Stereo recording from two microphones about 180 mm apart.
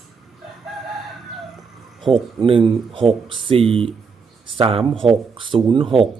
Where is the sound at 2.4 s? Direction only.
30° right (ahead or behind).